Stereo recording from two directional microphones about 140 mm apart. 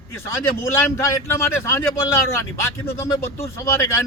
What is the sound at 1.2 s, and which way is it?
Speech, 15° left (ahead or behind).